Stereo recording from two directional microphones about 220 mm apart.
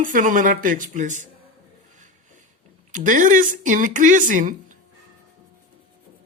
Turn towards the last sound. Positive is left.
turn(degrees=-35)  # may be behind; listen again after turning